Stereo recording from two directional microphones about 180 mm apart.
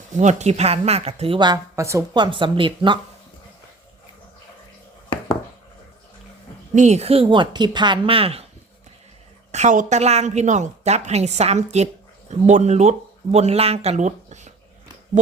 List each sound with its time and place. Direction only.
0.2 s a woman's voice: 40° right (ahead or behind)
5.0 s a sound: 25° left (ahead or behind)
6.7 s a woman's voice: 40° right (ahead or behind)
9.5 s a woman's voice: 40° right (ahead or behind)